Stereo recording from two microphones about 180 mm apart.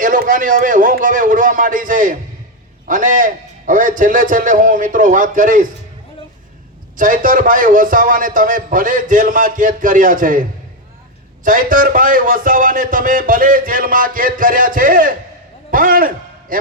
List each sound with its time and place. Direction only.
0.0 s a man's voice: 45° right (ahead or behind)
6.9 s a man's voice: 45° right (ahead or behind)
11.4 s a man's voice: 50° right (ahead or behind)